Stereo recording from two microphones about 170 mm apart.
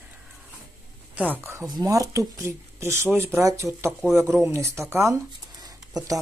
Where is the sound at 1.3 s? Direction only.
15° right (ahead or behind).